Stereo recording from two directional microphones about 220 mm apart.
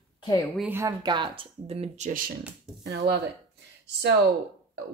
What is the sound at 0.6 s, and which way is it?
A woman's voice, 10° right (ahead or behind).